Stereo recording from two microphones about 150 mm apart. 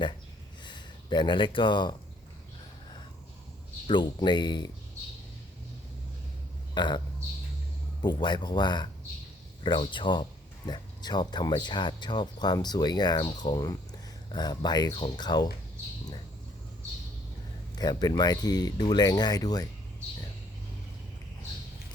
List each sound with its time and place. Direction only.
0.6 s speech: 30° left (ahead or behind)
3.8 s speech: 30° left (ahead or behind)
6.7 s a man's voice: 30° left (ahead or behind)
8.0 s speech: 30° left (ahead or behind)
17.7 s speech: 25° left (ahead or behind)